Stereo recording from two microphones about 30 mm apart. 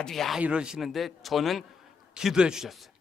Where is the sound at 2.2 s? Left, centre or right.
Right.